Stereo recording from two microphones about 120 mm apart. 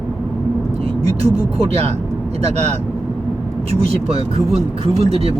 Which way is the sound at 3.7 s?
60° right (ahead or behind).